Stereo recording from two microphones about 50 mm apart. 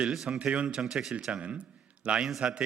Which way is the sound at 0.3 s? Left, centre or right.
Right.